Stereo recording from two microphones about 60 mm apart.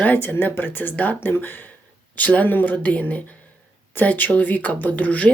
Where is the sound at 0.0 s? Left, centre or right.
Left.